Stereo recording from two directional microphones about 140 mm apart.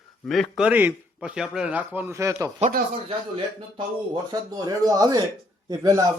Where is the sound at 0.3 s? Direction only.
Centre (ahead or behind); by 2.5 s 20° right (ahead or behind).